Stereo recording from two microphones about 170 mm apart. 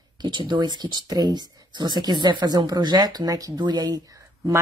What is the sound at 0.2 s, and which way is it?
A woman's voice, 25° right (ahead or behind).